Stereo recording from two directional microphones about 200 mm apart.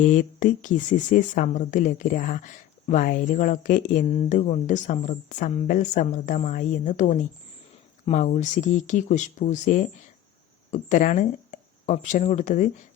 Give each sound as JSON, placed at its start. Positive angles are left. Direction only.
{"t": 0.0, "sound": "speech", "side_deg": 40}